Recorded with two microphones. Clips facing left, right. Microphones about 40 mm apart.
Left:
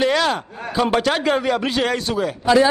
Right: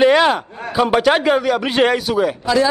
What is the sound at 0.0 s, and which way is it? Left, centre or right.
A man's voice, right.